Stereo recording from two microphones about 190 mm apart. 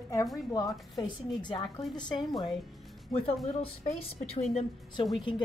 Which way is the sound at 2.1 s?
Centre (ahead or behind).